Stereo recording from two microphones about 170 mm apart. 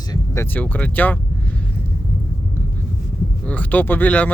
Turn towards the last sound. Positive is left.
turn(degrees=10)  # may be behind; listen again after turning